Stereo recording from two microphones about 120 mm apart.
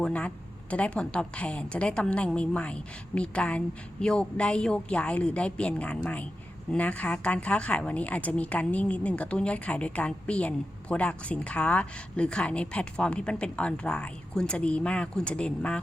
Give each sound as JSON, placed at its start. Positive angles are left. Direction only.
{"t": 0.0, "sound": "a woman's voice", "side_deg": 10}